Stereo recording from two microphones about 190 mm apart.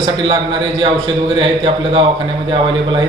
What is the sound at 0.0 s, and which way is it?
A man's voice, 25° right (ahead or behind).